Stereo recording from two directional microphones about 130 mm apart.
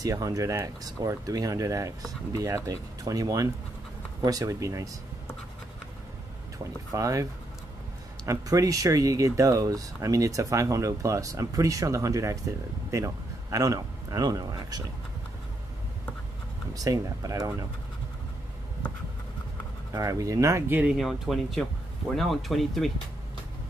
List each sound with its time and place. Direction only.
0.0 s speech: 25° right (ahead or behind)
6.9 s speech: 25° right (ahead or behind)
8.3 s a man's voice: 25° right (ahead or behind)
16.7 s speech: 25° right (ahead or behind)
19.9 s speech: 25° right (ahead or behind); by 22.8 s centre (ahead or behind)